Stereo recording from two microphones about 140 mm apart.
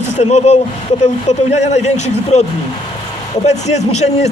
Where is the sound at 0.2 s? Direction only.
55° left (ahead or behind).